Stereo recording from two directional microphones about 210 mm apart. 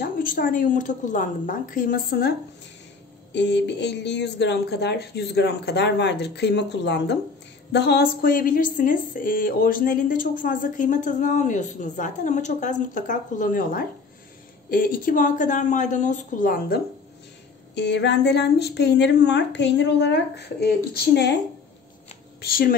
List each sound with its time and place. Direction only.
0.0 s speech: 45° left (ahead or behind)
3.3 s speech: 55° left (ahead or behind)
17.7 s speech: 55° left (ahead or behind)
22.4 s speech: 45° left (ahead or behind)